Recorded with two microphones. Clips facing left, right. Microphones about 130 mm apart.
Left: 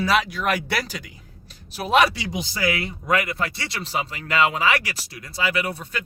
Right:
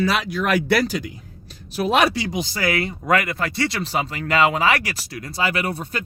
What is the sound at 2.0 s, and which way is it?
Speech, 50° right (ahead or behind).